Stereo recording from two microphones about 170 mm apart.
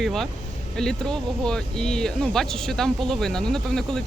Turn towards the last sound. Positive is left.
turn(degrees=5)  # may be behind; listen again after turning